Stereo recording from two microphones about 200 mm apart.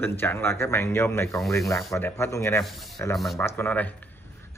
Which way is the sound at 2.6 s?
Centre (ahead or behind).